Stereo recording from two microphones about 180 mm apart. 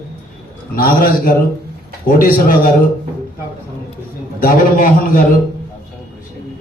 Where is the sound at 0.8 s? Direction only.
55° left (ahead or behind).